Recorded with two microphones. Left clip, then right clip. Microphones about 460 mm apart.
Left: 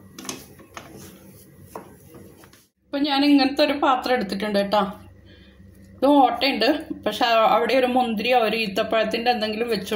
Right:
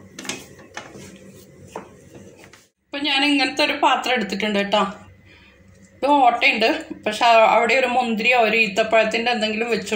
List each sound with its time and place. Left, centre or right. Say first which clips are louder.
2.9 s a woman's voice: even; left
6.1 s a woman's voice: right 5 dB; left